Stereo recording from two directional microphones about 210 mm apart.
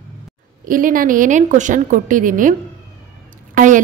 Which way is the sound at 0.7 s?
40° right (ahead or behind).